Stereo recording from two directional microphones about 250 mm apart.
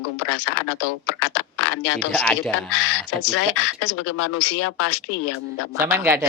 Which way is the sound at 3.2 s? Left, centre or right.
Left.